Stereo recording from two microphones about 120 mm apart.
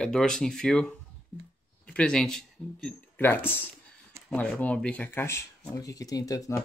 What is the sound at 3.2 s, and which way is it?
Speech, 15° left (ahead or behind).